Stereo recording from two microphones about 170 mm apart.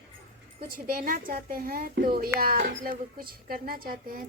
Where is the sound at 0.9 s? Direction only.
55° right (ahead or behind).